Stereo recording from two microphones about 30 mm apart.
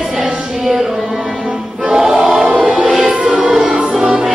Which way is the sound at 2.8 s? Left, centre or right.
Centre.